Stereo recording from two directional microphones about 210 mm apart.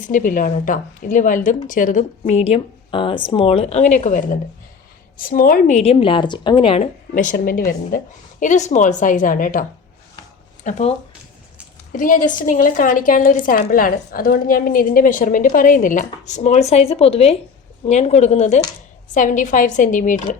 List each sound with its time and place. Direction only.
0.0 s a woman's voice: 40° left (ahead or behind)
7.1 s a woman's voice: 40° left (ahead or behind)